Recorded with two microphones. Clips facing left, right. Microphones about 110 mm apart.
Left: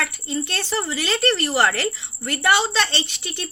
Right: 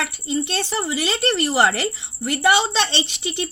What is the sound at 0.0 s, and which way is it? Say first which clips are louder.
A woman's voice: right 2 dB; 15° right (ahead or behind).